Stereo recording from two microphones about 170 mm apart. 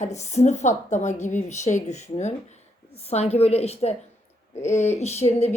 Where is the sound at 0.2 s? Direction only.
40° left (ahead or behind).